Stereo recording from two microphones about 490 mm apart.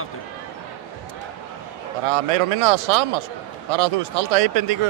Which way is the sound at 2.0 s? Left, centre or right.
Right.